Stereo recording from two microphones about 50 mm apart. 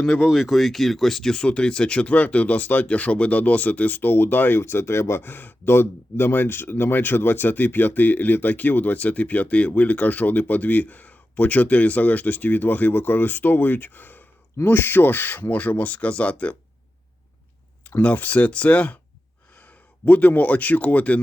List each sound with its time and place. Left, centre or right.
0.3 s speech: centre; by 4.6 s left
4.6 s speech: left
18.0 s speech: left